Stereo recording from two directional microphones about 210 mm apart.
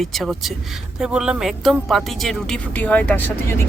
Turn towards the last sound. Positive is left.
turn(degrees=10)  # may be behind; listen again after turning